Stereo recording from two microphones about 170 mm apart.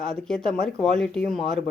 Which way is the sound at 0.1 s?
5° left (ahead or behind).